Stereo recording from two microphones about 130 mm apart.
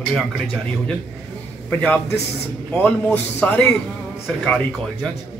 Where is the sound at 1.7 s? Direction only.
15° left (ahead or behind).